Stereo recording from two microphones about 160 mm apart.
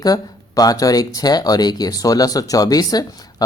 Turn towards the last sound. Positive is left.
turn(degrees=25)  # may be behind; listen again after turning